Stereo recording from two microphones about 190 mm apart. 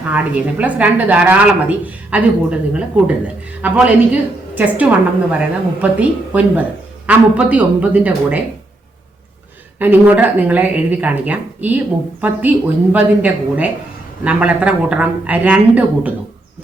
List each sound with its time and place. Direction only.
0.1 s a woman's voice: 10° right (ahead or behind)
9.7 s a woman's voice: 10° right (ahead or behind)